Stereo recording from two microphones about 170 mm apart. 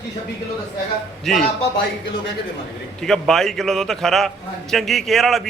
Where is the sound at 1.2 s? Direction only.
Centre (ahead or behind).